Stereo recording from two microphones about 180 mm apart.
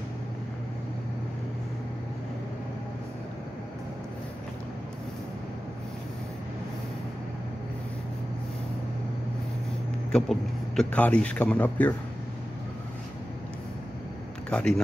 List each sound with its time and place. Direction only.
10.1 s a man's voice: 5° left (ahead or behind)
14.5 s a man's voice: 5° left (ahead or behind)